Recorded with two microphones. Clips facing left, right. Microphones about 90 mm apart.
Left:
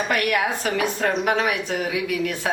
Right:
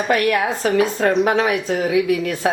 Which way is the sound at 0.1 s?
35° right (ahead or behind).